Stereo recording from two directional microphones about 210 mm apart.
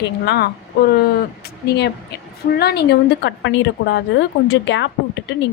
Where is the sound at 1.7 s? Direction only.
50° left (ahead or behind).